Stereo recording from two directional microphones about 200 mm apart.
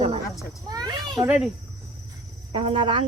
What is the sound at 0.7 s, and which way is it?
Speech, 20° right (ahead or behind).